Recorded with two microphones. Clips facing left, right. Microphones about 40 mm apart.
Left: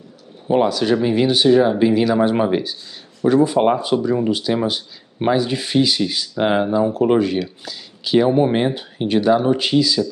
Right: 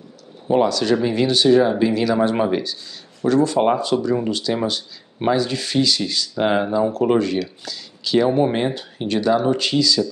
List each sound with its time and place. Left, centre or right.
0.5 s speech: centre
1.5 s speech: centre
1.8 s speech: centre